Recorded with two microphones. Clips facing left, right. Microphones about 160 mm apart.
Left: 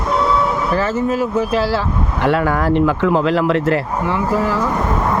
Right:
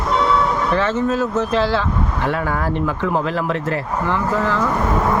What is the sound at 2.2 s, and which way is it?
Speech, 80° left.